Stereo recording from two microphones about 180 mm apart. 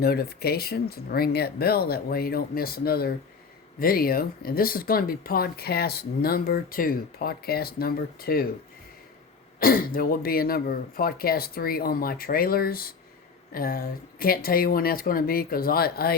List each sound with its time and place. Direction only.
0.0 s speech: 60° left (ahead or behind)
9.6 s speech: 50° left (ahead or behind)